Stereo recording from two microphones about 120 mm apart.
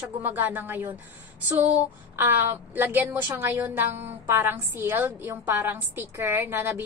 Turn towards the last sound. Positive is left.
turn(degrees=-20)  # may be behind; listen again after turning